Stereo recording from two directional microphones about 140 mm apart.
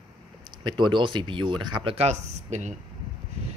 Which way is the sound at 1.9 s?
55° right (ahead or behind).